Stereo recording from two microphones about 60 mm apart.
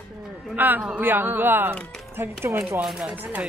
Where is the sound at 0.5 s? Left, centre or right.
Right.